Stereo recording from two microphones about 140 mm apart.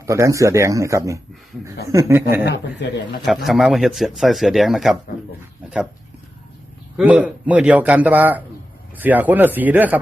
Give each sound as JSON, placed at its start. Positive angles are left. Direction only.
{"t": 0.0, "sound": "speech", "side_deg": -20}
{"t": 3.2, "sound": "a man's voice", "side_deg": 0}
{"t": 6.9, "sound": "a man's voice", "side_deg": -10}